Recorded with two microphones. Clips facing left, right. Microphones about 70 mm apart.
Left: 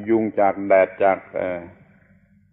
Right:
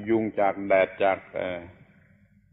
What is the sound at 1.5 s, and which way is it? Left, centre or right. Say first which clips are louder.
Speech: left 6 dB; left.